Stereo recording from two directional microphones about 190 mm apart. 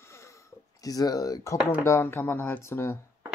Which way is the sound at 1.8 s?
15° left (ahead or behind).